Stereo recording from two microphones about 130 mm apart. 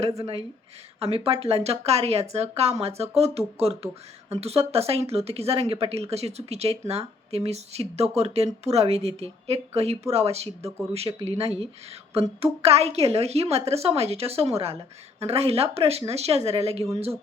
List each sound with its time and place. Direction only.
0.2 s speech: 50° right (ahead or behind)